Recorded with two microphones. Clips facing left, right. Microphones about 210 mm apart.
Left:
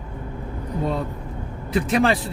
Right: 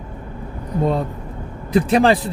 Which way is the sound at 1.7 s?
35° right (ahead or behind).